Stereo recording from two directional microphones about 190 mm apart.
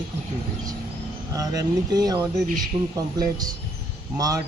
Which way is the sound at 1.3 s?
20° right (ahead or behind).